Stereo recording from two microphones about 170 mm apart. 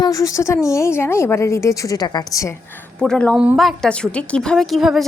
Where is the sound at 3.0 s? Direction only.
5° left (ahead or behind).